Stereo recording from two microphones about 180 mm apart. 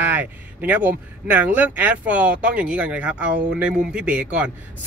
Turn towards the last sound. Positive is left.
turn(degrees=-5)  # may be behind; listen again after turning